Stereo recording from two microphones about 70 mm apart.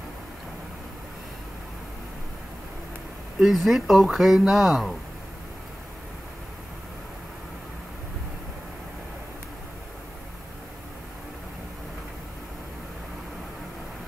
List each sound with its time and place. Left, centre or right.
3.3 s speech: centre